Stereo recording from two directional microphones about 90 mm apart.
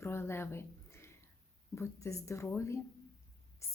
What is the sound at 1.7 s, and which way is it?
Speech, 35° left (ahead or behind).